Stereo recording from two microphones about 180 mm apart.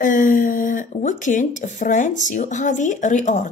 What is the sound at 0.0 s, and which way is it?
Speech, 45° left (ahead or behind).